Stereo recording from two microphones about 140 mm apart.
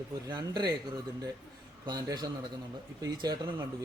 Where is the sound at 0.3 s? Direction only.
30° right (ahead or behind).